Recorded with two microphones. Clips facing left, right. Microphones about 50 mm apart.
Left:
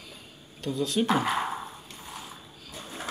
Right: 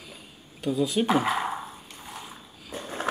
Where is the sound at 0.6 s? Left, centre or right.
Centre.